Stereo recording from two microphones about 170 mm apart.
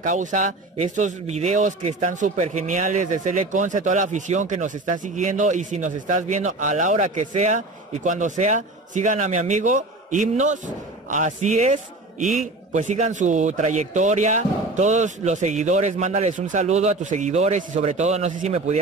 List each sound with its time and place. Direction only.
0.0 s a man's voice: 50° right (ahead or behind)